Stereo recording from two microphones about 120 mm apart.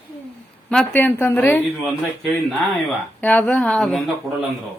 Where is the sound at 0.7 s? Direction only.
15° left (ahead or behind).